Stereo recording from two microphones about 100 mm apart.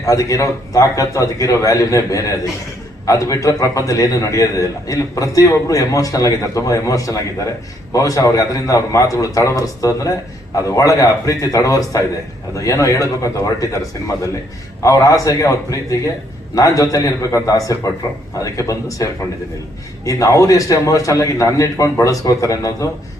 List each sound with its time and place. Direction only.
0.0 s a man's voice: 35° left (ahead or behind)
14.8 s a man's voice: 35° left (ahead or behind)